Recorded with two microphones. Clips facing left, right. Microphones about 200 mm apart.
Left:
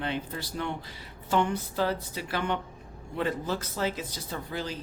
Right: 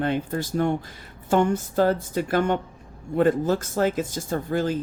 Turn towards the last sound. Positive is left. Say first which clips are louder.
# right 10 dB
turn(degrees=-50)  # may be behind; listen again after turning